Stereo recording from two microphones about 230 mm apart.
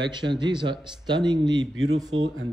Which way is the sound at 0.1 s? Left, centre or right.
Centre.